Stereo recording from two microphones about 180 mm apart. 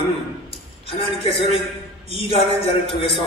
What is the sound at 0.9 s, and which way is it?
A man's voice, 30° left (ahead or behind).